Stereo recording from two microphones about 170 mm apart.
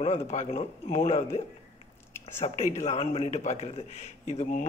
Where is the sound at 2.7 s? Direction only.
45° left (ahead or behind).